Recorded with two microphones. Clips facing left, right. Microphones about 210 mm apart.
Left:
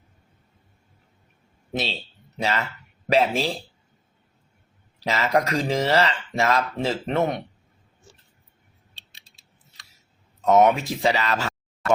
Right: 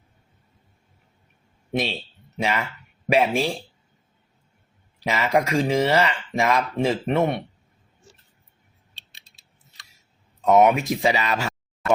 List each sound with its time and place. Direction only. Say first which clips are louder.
1.7 s speech: right 3 dB; 15° right (ahead or behind)
5.0 s speech: right 1 dB; 10° right (ahead or behind)
10.5 s speech: right 1 dB; centre (ahead or behind)
10.8 s speech: right 1 dB; 15° right (ahead or behind)